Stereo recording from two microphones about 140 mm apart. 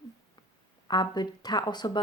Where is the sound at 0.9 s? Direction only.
30° left (ahead or behind).